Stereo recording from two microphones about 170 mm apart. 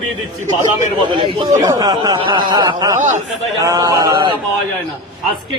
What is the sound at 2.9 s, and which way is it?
Speech, 45° right (ahead or behind).